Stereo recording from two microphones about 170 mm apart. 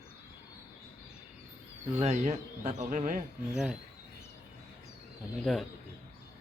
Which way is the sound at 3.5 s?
5° right (ahead or behind).